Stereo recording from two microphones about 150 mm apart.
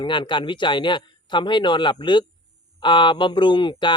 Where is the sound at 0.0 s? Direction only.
30° left (ahead or behind).